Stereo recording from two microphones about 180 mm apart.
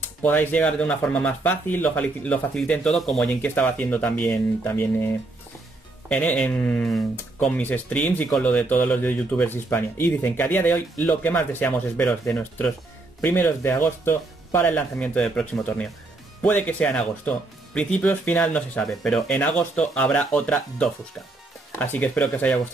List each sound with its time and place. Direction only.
0.2 s speech: 10° left (ahead or behind)